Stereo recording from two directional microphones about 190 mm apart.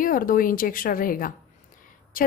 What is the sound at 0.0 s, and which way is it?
A woman's voice, 45° left (ahead or behind).